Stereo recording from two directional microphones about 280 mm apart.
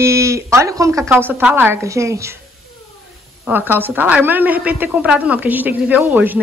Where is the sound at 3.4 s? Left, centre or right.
Centre.